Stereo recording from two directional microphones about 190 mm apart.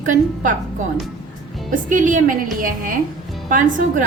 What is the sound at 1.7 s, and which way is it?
A woman's voice, 45° right (ahead or behind).